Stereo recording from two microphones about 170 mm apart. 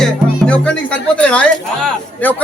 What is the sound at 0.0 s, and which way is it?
Speech, 5° left (ahead or behind).